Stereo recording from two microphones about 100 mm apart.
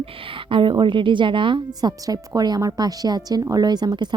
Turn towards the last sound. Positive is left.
turn(degrees=-45)  # may be behind; listen again after turning